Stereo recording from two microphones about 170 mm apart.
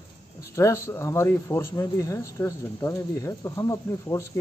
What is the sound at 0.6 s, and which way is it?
Speech, 20° left (ahead or behind).